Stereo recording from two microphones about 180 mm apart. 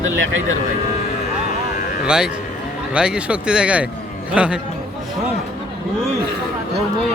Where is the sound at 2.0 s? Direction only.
5° right (ahead or behind).